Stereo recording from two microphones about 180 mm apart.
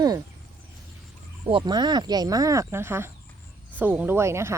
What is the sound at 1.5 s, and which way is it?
Speech, 25° right (ahead or behind).